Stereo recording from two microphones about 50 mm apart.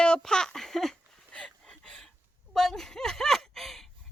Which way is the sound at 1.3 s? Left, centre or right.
Left.